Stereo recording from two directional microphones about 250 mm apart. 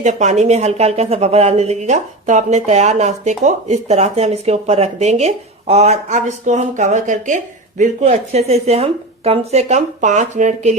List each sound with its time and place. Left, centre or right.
0.0 s speech: right